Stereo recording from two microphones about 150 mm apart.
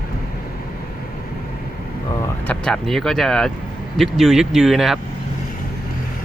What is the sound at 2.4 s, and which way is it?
Speech, 5° left (ahead or behind).